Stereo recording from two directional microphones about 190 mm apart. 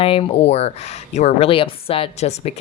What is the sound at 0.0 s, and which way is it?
Speech, 30° left (ahead or behind).